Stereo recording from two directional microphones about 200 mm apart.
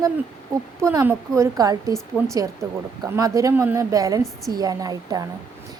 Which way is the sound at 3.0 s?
15° right (ahead or behind).